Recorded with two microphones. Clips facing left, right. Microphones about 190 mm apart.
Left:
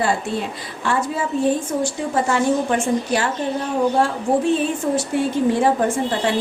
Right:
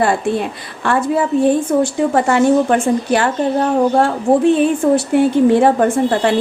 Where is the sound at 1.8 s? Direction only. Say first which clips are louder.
Right 6 dB; 60° right (ahead or behind).